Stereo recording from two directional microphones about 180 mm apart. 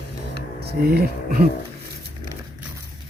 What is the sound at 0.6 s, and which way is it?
Speech, 60° right (ahead or behind).